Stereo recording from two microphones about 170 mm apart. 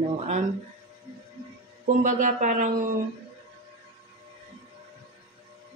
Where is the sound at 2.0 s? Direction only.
45° right (ahead or behind).